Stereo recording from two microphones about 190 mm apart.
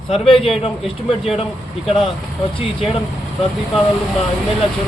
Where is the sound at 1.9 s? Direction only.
Centre (ahead or behind).